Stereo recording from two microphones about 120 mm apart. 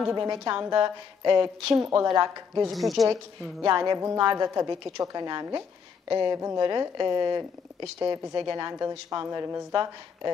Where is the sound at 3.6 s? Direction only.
35° right (ahead or behind).